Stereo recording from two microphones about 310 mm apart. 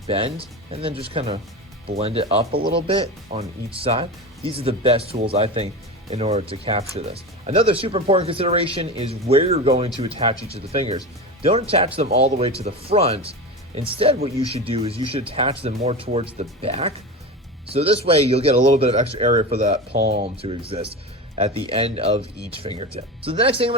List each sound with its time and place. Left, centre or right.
0.1 s speech: centre
4.4 s speech: centre
12.2 s speech: centre
19.9 s speech: right
20.2 s speech: centre